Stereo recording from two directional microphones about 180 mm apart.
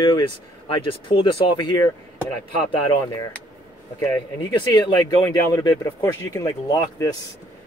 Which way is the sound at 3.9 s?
15° left (ahead or behind).